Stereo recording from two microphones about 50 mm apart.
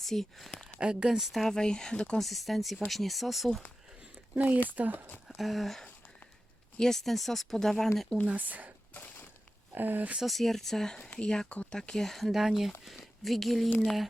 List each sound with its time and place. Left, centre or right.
0.0 s speech: centre
0.8 s speech: right
1.0 s speech: centre
1.5 s speech: centre
2.1 s speech: centre
4.4 s speech: right
5.4 s speech: centre
8.3 s speech: right
8.9 s crushing: left
9.7 s speech: right
10.2 s speech: centre